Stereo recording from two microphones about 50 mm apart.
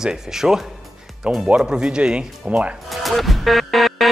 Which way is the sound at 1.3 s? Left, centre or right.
Right.